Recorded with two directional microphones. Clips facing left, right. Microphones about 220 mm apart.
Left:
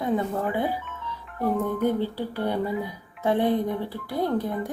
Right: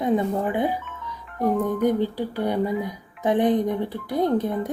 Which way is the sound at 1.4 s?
15° right (ahead or behind).